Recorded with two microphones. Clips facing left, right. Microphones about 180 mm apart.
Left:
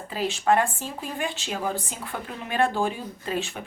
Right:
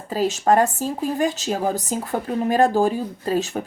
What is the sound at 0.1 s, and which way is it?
Speech, 40° right (ahead or behind).